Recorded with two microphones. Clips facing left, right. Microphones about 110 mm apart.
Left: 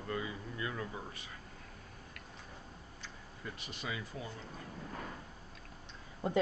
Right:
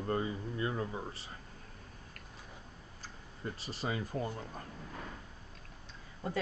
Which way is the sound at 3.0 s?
35° right (ahead or behind).